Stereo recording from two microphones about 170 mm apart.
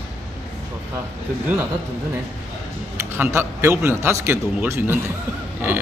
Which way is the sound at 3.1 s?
15° right (ahead or behind).